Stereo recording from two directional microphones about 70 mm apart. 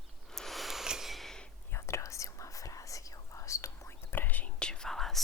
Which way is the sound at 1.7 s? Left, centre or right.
Left.